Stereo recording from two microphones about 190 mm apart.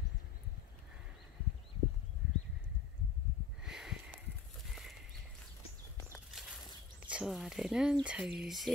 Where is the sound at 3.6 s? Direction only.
5° right (ahead or behind).